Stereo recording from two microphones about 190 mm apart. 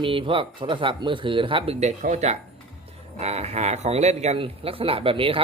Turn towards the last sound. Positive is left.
turn(degrees=-30)  # may be behind; listen again after turning